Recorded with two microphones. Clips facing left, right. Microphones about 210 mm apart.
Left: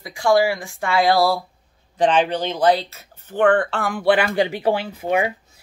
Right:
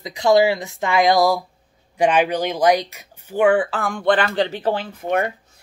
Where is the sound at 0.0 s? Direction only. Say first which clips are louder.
Right 2 dB; 20° right (ahead or behind).